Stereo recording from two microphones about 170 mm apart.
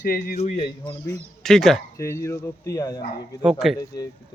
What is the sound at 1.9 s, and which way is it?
Speech, 15° left (ahead or behind).